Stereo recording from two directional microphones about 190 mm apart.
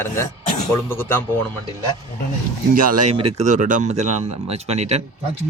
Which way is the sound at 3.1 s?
30° right (ahead or behind).